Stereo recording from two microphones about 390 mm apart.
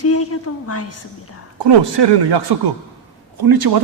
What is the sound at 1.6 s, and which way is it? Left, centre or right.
Speech, right.